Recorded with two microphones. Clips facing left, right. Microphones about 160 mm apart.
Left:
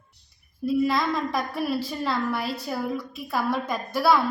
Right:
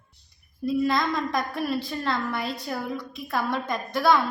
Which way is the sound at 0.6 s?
5° left (ahead or behind).